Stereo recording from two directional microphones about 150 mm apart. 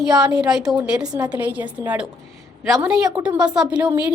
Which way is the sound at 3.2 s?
10° right (ahead or behind).